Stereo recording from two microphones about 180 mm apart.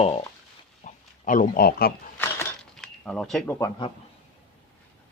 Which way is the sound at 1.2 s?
45° left (ahead or behind).